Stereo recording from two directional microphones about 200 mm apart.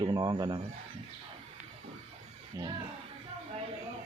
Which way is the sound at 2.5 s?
15° right (ahead or behind).